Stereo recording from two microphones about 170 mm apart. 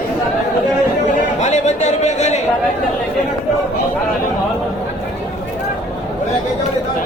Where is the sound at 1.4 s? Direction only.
40° left (ahead or behind).